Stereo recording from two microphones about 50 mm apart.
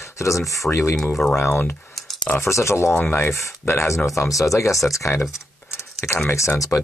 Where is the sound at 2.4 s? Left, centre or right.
Left.